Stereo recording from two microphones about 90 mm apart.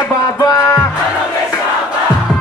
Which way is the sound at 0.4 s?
40° left (ahead or behind).